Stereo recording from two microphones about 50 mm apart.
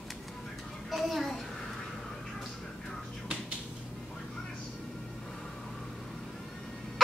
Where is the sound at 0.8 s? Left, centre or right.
Centre.